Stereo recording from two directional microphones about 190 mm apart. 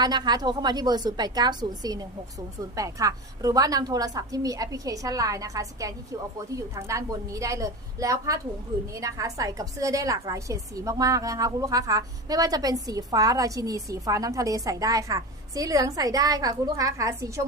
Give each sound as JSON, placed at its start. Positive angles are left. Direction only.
{"t": 0.0, "sound": "a woman's voice", "side_deg": -20}